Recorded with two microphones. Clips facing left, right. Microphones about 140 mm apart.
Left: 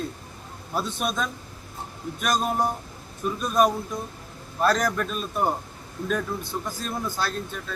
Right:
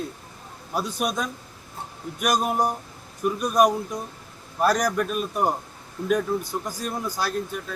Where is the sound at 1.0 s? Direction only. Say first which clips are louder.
Right 1 dB; 15° right (ahead or behind).